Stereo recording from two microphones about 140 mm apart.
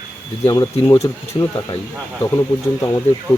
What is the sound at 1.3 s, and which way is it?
Speech, 20° left (ahead or behind).